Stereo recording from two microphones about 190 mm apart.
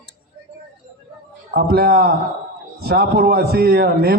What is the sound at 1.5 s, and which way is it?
A man's voice, 55° right (ahead or behind).